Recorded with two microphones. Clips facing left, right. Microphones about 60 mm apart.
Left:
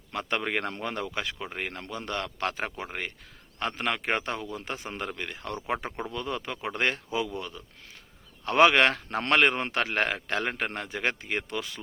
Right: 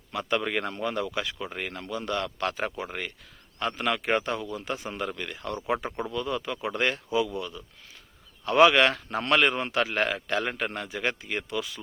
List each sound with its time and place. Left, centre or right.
0.1 s a man's voice: left
1.4 s speech: centre
1.6 s a man's voice: left